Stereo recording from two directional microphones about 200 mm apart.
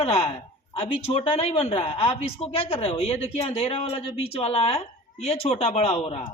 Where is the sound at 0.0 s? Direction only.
30° left (ahead or behind).